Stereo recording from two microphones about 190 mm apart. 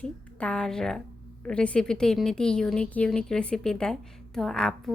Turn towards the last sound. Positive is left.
turn(degrees=5)  # may be behind; listen again after turning